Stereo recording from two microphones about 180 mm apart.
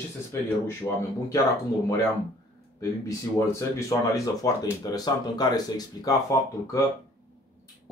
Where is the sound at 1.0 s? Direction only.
20° left (ahead or behind).